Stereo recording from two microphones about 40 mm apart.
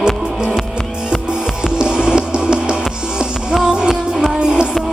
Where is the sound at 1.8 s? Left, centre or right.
Right.